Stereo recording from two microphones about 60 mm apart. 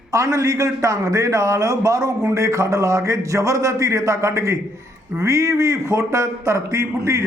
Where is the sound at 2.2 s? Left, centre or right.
Right.